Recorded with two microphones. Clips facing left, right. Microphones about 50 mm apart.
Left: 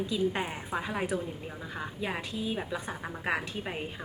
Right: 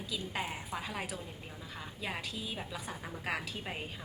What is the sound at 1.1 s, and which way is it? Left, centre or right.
Speech, left.